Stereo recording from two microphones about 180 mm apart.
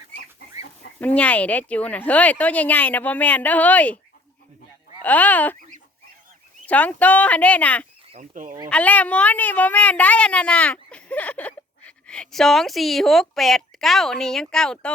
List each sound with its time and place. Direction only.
0.9 s speech: 10° left (ahead or behind)
5.0 s speech: 10° left (ahead or behind)
6.7 s speech: 10° left (ahead or behind)
8.2 s speech: 45° right (ahead or behind)
8.7 s a woman's voice: 10° left (ahead or behind)